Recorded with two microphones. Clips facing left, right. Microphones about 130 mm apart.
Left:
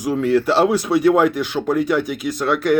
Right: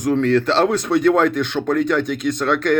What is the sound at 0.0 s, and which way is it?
Speech, 5° left (ahead or behind).